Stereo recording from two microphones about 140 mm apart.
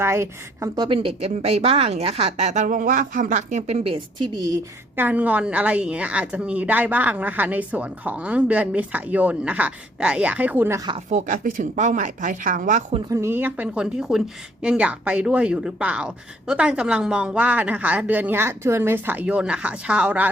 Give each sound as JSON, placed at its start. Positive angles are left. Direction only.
{"t": 0.0, "sound": "speech", "side_deg": -20}
{"t": 0.8, "sound": "a woman's voice", "side_deg": -40}
{"t": 4.9, "sound": "a woman's voice", "side_deg": -10}
{"t": 10.8, "sound": "speech", "side_deg": -30}
{"t": 11.1, "sound": "a woman's voice", "side_deg": -65}
{"t": 13.1, "sound": "a woman's voice", "side_deg": -20}